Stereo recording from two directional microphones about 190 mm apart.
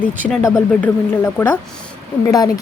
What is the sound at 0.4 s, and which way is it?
Speech, 15° left (ahead or behind).